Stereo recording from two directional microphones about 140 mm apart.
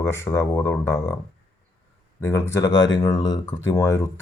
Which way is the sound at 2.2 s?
20° left (ahead or behind).